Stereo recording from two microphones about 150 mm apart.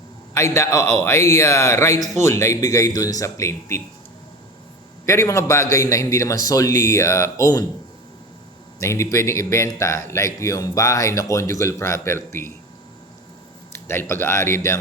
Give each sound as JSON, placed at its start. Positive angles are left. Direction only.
{"t": 0.5, "sound": "a man's voice", "side_deg": 20}
{"t": 5.0, "sound": "a man's voice", "side_deg": 20}
{"t": 8.8, "sound": "a man's voice", "side_deg": 20}
{"t": 13.7, "sound": "speech", "side_deg": 15}